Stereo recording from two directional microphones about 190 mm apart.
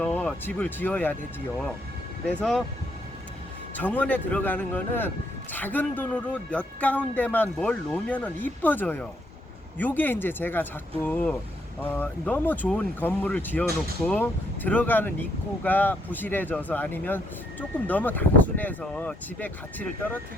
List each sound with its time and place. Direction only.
0.0 s speech: 5° left (ahead or behind)
2.2 s speech: 5° left (ahead or behind)
3.8 s speech: 10° left (ahead or behind)